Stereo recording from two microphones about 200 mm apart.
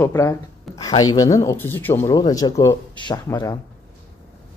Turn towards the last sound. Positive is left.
turn(degrees=20)  # may be behind; listen again after turning